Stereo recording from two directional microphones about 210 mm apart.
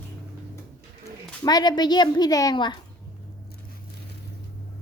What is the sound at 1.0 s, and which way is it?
Speech, 20° left (ahead or behind).